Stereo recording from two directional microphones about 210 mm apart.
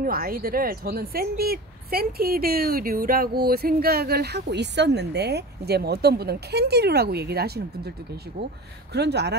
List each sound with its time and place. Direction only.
0.0 s a woman's voice: 45° right (ahead or behind)
8.9 s a woman's voice: 50° right (ahead or behind)